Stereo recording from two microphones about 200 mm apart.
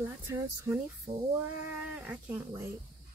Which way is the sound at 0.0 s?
10° right (ahead or behind).